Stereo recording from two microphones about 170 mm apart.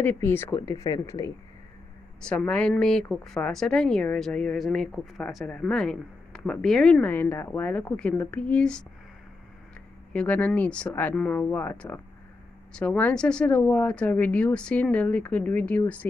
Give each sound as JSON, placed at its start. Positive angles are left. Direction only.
{"t": 0.0, "sound": "speech", "side_deg": 15}
{"t": 2.2, "sound": "a woman's voice", "side_deg": 5}
{"t": 10.1, "sound": "speech", "side_deg": 10}